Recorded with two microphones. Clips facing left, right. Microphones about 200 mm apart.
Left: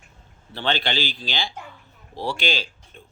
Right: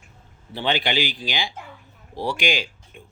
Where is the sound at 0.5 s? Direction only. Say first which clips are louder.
Right 2 dB; 15° right (ahead or behind).